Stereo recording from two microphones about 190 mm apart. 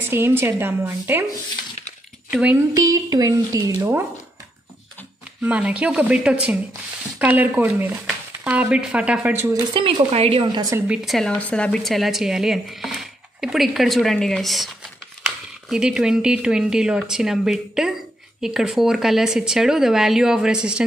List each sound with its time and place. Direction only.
0.0 s speech: 10° right (ahead or behind)
2.3 s speech: 10° right (ahead or behind)
5.4 s speech: 5° right (ahead or behind)
9.8 s a woman's voice: 25° right (ahead or behind)
10.9 s speech: centre (ahead or behind)